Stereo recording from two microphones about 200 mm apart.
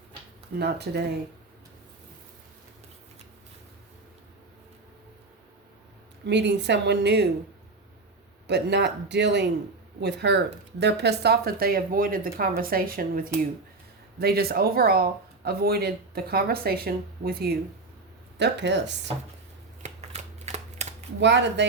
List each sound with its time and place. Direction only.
0.6 s a woman's voice: 55° right (ahead or behind)
6.2 s a woman's voice: 60° right (ahead or behind)
8.4 s a woman's voice: 60° right (ahead or behind)
19.8 s camera: 35° right (ahead or behind)
21.2 s a woman's voice: 60° right (ahead or behind)